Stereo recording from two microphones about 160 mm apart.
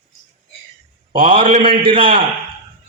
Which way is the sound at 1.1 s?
35° right (ahead or behind).